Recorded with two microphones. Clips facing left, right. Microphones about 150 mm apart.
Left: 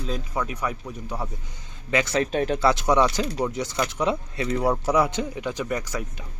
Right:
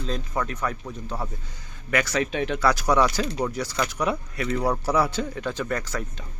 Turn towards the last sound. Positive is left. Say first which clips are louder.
# even
turn(degrees=15)  # may be behind; listen again after turning